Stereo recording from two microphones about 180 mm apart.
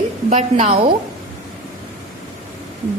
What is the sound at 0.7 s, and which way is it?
Speech, 30° right (ahead or behind).